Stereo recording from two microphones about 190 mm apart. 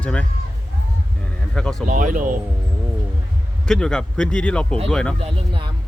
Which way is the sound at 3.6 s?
5° left (ahead or behind).